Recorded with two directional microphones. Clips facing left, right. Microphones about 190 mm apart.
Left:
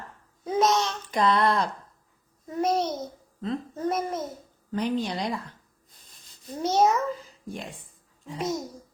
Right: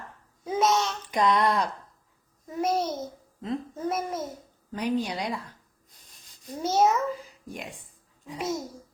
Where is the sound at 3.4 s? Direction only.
5° right (ahead or behind).